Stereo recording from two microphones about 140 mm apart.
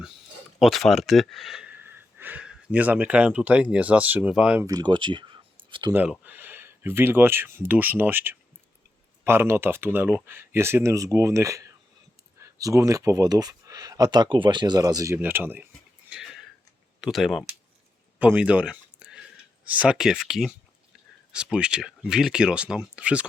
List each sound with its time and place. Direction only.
0.6 s speech: centre (ahead or behind)
4.6 s speech: 30° right (ahead or behind)
5.9 s speech: 10° right (ahead or behind)
15.1 s speech: 15° right (ahead or behind)
16.0 s a sound: 5° right (ahead or behind)
17.0 s speech: centre (ahead or behind)
18.2 s a sound: 10° right (ahead or behind)
19.6 s speech: 10° right (ahead or behind)